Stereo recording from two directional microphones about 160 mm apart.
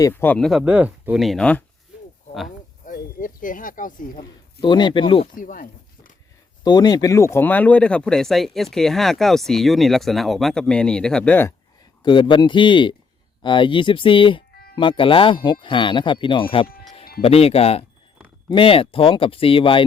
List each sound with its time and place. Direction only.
0.0 s speech: 15° left (ahead or behind)
2.8 s speech: 55° left (ahead or behind)
4.6 s speech: 30° left (ahead or behind)
5.2 s speech: 60° left (ahead or behind)
6.7 s speech: 25° left (ahead or behind)
12.0 s a man's voice: 30° left (ahead or behind)